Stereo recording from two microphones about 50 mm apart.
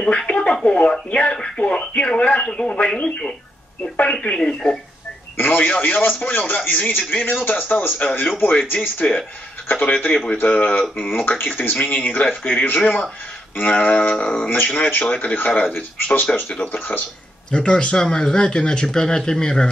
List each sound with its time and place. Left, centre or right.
0.3 s a sound: left
0.7 s speech: left
4.4 s speech: centre
5.4 s speech: left
8.9 s speech: left
17.5 s speech: left